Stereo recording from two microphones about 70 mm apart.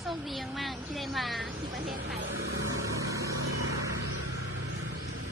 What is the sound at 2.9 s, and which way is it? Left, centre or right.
Vehicle, right.